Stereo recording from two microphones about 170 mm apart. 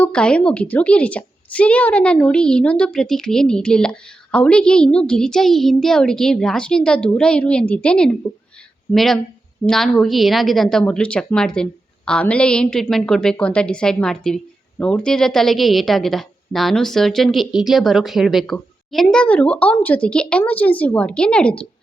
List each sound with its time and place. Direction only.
0.0 s a woman's voice: 5° left (ahead or behind)